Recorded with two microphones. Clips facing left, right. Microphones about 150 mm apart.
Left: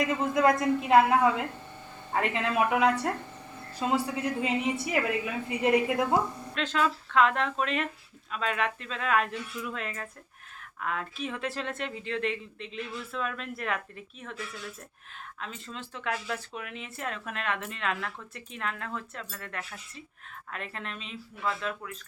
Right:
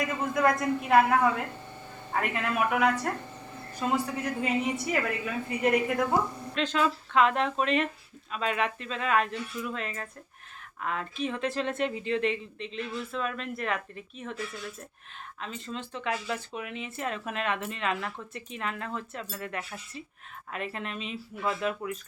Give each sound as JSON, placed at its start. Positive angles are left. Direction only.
{"t": 0.3, "sound": "a woman's voice", "side_deg": 15}
{"t": 6.5, "sound": "speech", "side_deg": 0}
{"t": 15.4, "sound": "speech", "side_deg": 0}